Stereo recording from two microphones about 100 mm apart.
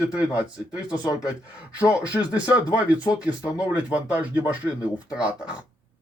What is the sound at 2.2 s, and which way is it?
Speech, 10° right (ahead or behind).